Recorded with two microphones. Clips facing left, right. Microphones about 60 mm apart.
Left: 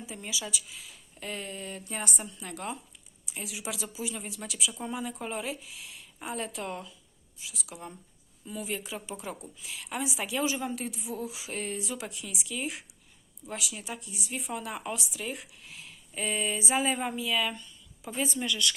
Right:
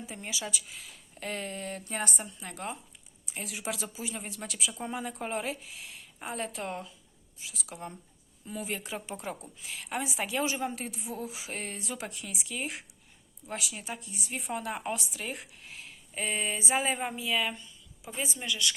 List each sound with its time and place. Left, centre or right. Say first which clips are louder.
0.0 s speech: even; right
1.8 s speech: right 1 dB; right
3.2 s speech: right 1 dB; right